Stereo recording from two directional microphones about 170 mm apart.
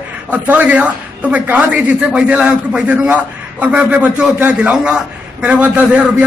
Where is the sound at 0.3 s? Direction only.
10° right (ahead or behind).